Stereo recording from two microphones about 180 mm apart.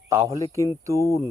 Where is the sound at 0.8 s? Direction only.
15° right (ahead or behind).